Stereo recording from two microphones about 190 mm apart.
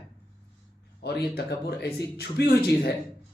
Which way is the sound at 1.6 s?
60° left (ahead or behind).